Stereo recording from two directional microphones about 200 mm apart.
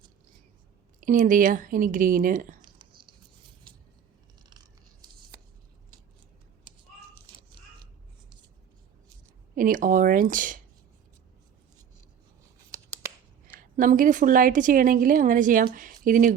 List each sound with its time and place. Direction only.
1.0 s speech: 40° right (ahead or behind)
2.6 s a sound: 20° right (ahead or behind)
9.6 s a woman's voice: 45° right (ahead or behind)
12.7 s scissors: 15° right (ahead or behind)
13.6 s a woman's voice: 40° right (ahead or behind)